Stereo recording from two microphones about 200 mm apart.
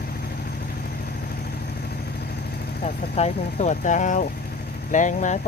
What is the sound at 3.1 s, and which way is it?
Speech, 35° left (ahead or behind).